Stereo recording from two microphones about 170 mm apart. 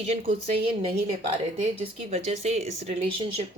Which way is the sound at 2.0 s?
40° right (ahead or behind).